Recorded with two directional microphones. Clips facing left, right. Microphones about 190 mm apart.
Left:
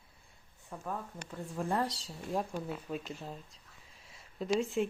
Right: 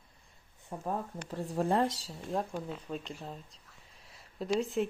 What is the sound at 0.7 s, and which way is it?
Speech, 35° right (ahead or behind).